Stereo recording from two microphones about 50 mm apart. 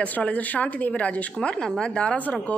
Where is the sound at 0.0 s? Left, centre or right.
Left.